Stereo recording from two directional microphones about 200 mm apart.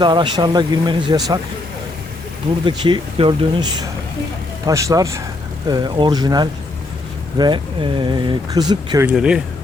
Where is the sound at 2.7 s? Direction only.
25° right (ahead or behind).